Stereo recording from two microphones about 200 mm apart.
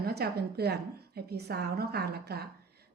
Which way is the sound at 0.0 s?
55° right (ahead or behind).